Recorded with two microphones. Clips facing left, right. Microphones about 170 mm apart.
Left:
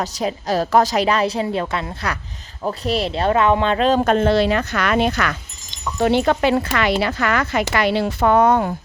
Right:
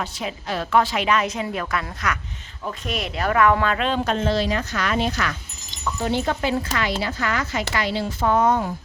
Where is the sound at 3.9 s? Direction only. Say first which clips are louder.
Left 6 dB; 50° left (ahead or behind).